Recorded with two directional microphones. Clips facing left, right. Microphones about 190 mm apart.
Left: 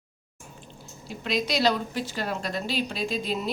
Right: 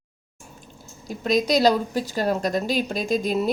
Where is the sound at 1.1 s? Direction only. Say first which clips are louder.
Right 7 dB; 45° right (ahead or behind).